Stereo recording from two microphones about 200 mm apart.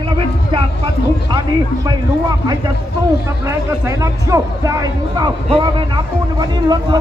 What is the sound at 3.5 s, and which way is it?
Speech, 15° right (ahead or behind).